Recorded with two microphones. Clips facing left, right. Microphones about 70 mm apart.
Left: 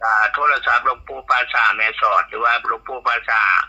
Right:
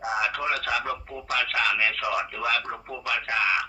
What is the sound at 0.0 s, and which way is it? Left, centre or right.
Speech, left.